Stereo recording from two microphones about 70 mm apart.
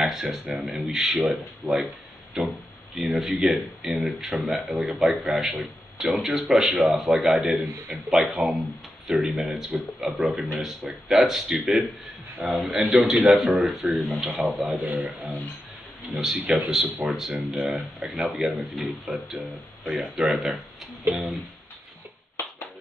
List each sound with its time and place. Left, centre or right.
0.0 s speech: centre
14.8 s speech: right
16.2 s speech: centre